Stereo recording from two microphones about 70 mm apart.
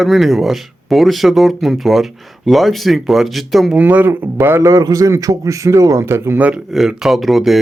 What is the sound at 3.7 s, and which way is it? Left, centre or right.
Speech, right.